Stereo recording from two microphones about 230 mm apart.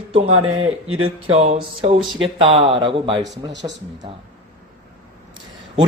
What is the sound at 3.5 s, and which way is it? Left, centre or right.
Speech, right.